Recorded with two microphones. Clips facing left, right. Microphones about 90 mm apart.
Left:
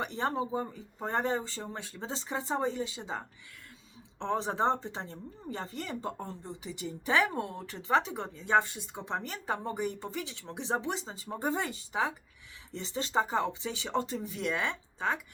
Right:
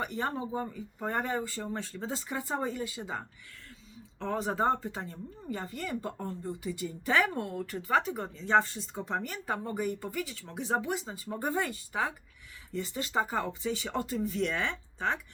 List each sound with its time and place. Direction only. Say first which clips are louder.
0.0 s speech: left 1 dB; 25° left (ahead or behind)
4.2 s speech: even; 25° left (ahead or behind)